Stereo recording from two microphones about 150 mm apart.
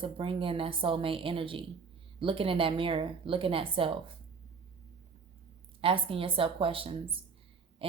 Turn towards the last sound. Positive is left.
turn(degrees=-35)  # may be behind; listen again after turning